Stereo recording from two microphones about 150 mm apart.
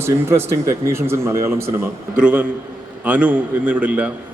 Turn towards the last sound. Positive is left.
turn(degrees=-10)  # may be behind; listen again after turning